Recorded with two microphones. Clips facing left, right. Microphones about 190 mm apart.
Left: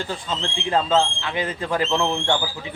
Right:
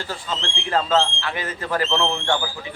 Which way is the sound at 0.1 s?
15° left (ahead or behind).